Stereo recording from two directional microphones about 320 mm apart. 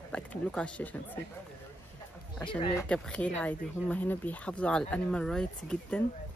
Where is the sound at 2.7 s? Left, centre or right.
Centre.